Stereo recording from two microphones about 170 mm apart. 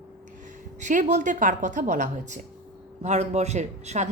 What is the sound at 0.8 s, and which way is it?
Speech, 45° right (ahead or behind).